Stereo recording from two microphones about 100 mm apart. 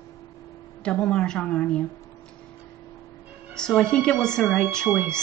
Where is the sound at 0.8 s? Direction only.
10° left (ahead or behind).